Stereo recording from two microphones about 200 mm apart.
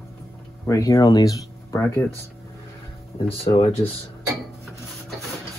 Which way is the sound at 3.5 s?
30° left (ahead or behind).